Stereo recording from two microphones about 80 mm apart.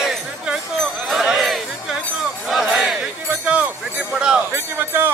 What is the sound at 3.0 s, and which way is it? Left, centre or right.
Speech, centre.